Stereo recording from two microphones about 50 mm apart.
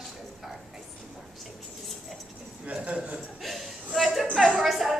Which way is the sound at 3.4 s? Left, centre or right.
Centre.